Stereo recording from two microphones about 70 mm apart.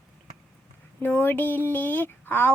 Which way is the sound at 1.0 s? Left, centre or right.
Left.